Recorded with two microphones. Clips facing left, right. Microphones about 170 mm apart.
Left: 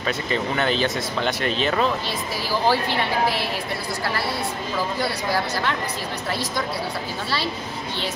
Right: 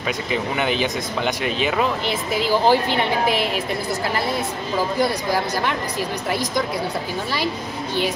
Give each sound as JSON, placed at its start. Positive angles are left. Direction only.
{"t": 0.0, "sound": "speech", "side_deg": -10}
{"t": 2.0, "sound": "speech", "side_deg": -20}
{"t": 5.0, "sound": "speech", "side_deg": -15}